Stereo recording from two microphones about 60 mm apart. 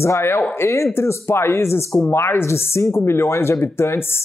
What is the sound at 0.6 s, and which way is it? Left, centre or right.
Speech, left.